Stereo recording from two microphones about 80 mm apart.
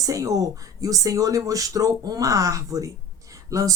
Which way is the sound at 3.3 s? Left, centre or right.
Right.